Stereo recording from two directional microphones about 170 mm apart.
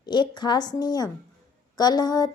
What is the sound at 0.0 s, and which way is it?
Speech, 25° left (ahead or behind).